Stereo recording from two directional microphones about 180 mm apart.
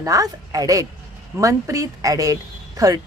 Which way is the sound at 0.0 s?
20° right (ahead or behind).